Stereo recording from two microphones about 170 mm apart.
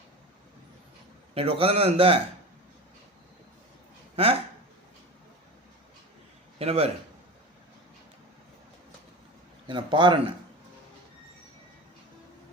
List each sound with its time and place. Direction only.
1.3 s a man's voice: 35° right (ahead or behind)
4.1 s speech: 35° right (ahead or behind)
6.6 s a man's voice: 35° right (ahead or behind)
9.6 s speech: 30° right (ahead or behind)